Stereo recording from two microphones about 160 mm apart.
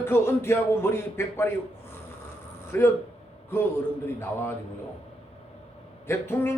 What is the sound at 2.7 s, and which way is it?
Speech, 15° left (ahead or behind).